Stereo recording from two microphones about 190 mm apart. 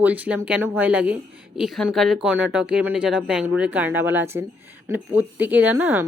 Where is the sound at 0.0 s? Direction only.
10° right (ahead or behind).